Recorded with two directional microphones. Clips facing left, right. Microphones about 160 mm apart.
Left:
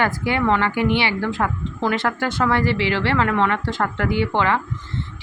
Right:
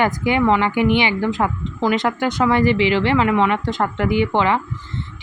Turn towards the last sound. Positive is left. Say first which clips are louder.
# right 2 dB
turn(degrees=-15)  # may be behind; listen again after turning